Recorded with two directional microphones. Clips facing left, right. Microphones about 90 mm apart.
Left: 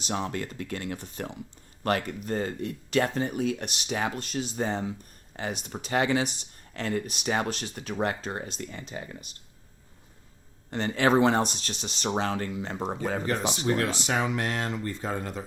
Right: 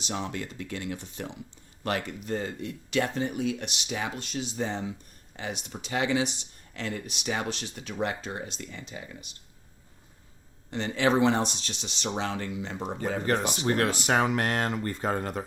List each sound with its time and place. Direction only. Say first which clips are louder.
0.0 s speech: left 2 dB; 45° left (ahead or behind)
10.7 s speech: left 2 dB; 45° left (ahead or behind)
13.2 s speech: right 2 dB; 50° right (ahead or behind)